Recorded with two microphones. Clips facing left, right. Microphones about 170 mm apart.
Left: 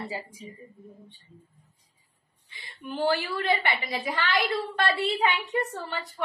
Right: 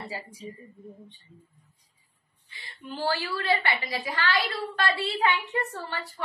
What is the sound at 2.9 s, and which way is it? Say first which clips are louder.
A woman's voice: left 3 dB; 20° left (ahead or behind).